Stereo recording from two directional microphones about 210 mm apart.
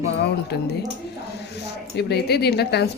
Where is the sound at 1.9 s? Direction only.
50° left (ahead or behind).